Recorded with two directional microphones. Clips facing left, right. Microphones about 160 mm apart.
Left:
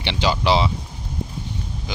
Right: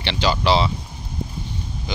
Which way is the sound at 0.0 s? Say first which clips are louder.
Even; 15° left (ahead or behind).